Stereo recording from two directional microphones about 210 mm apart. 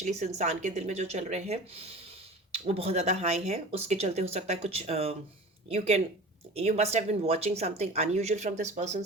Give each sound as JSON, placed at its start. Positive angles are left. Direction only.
{"t": 0.0, "sound": "speech", "side_deg": -30}